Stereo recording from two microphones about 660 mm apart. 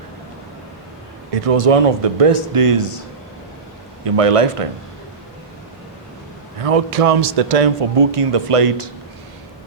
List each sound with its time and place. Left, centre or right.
1.3 s speech: right
4.0 s speech: right
6.6 s speech: right